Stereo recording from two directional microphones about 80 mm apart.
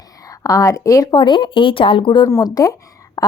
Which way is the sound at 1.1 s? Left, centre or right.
Left.